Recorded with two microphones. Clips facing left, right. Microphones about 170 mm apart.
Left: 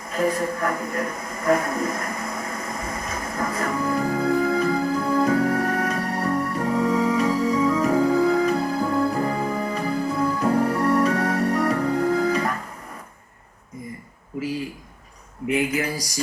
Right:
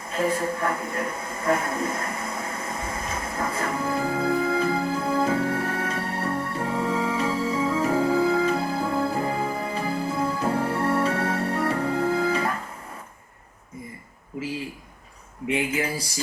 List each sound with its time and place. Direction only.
0.1 s a sound: 30° right (ahead or behind)
6.3 s music: 30° right (ahead or behind)
15.4 s speech: 25° right (ahead or behind)